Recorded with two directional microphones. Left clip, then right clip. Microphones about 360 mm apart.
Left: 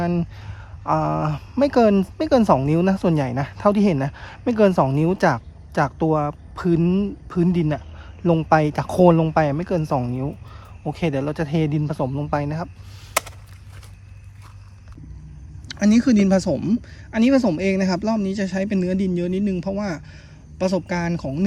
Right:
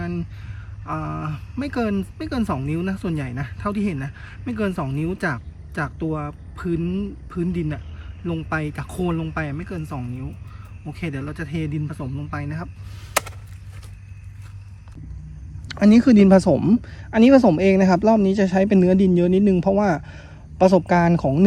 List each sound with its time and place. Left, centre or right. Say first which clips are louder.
0.0 s speech: left 7 dB; centre
15.6 s speech: right 3 dB; centre